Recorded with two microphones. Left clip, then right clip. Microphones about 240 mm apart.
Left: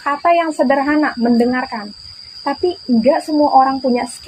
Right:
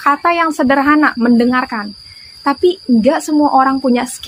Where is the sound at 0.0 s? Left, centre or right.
Right.